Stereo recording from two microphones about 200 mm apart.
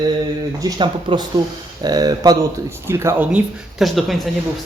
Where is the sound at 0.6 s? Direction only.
20° right (ahead or behind).